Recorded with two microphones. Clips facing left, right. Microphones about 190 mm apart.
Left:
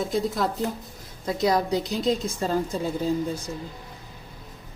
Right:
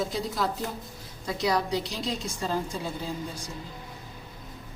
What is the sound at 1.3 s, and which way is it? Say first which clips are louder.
A woman's voice: left 4 dB; 45° left (ahead or behind).